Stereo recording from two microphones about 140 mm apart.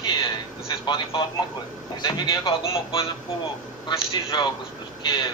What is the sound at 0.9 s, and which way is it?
A man's voice, 35° left (ahead or behind).